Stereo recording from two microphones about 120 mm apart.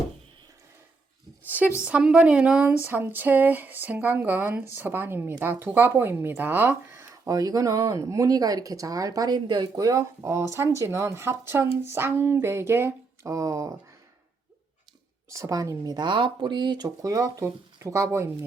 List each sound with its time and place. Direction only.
1.5 s a sound: 15° right (ahead or behind)
1.8 s speech: 10° right (ahead or behind)
7.3 s speech: 30° right (ahead or behind)
15.3 s speech: 25° right (ahead or behind)